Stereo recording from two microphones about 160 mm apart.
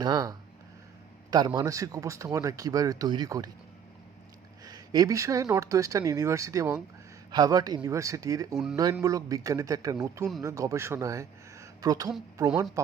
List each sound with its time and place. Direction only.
0.0 s speech: 25° right (ahead or behind)
4.6 s speech: 25° right (ahead or behind)